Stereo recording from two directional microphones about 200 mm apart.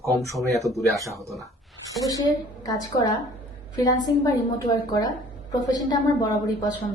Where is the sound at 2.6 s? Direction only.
20° left (ahead or behind).